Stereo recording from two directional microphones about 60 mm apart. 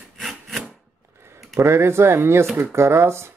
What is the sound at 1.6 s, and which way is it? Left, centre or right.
Speech, right.